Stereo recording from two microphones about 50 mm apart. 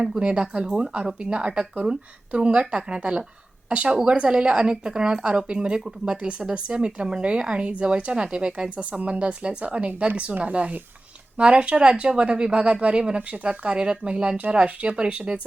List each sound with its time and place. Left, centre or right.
0.2 s a woman's voice: right